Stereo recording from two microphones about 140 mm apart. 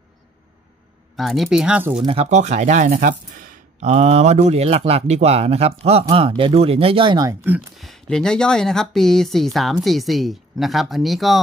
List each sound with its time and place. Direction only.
1.1 s speech: centre (ahead or behind)
2.0 s speech: 45° right (ahead or behind); by 3.5 s 75° right (ahead or behind)
3.8 s speech: 50° right (ahead or behind)
7.2 s speech: 15° right (ahead or behind)
7.7 s speech: centre (ahead or behind)